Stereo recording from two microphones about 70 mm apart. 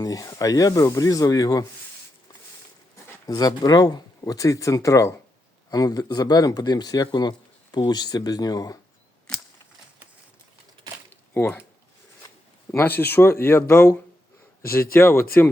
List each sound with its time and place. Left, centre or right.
0.0 s speech: left
3.2 s speech: left
5.7 s speech: left
11.3 s speech: left
12.7 s speech: left